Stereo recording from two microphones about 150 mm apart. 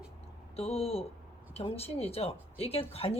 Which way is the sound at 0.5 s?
40° left (ahead or behind).